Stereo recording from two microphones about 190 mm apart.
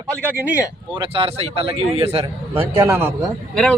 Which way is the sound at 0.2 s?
10° right (ahead or behind).